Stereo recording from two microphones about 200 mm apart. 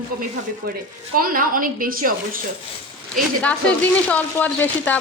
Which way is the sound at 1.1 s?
45° right (ahead or behind).